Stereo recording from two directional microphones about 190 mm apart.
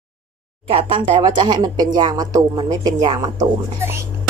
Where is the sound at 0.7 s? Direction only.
25° right (ahead or behind).